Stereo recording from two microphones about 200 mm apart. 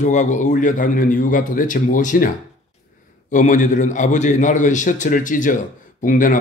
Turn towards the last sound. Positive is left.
turn(degrees=40)  # may be behind; listen again after turning